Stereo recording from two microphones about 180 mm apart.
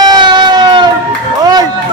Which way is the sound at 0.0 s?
25° right (ahead or behind).